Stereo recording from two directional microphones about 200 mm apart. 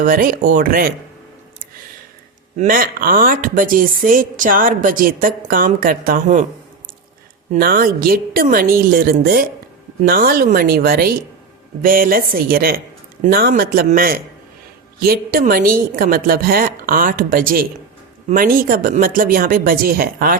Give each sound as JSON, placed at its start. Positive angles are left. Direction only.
{"t": 0.0, "sound": "a woman's voice", "side_deg": -45}
{"t": 2.6, "sound": "a woman's voice", "side_deg": -45}
{"t": 7.5, "sound": "a woman's voice", "side_deg": -45}